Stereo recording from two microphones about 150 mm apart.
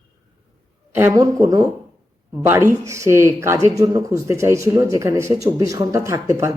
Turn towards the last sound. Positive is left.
turn(degrees=-20)  # may be behind; listen again after turning